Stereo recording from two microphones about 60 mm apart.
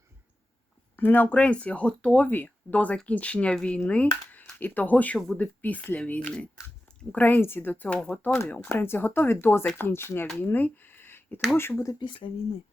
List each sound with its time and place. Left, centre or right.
0.9 s speech: left
6.3 s chewing: centre
7.1 s speech: left
8.7 s speech: left
10.3 s a sound: left